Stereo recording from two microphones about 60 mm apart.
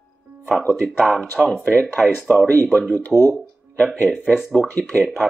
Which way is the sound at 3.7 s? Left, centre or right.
Left.